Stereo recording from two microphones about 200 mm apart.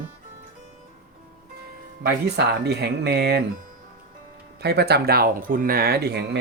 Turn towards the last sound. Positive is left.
turn(degrees=-55)  # may be behind; listen again after turning